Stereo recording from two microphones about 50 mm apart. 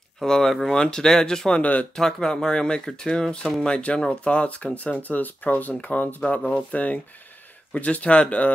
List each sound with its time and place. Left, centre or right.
0.2 s speech: centre
1.6 s speech: left
2.0 s speech: centre; by 8.5 s left